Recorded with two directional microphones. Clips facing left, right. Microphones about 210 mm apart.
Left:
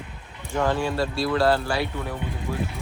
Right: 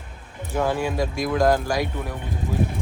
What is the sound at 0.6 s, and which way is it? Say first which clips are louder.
Speech: even; 10° right (ahead or behind).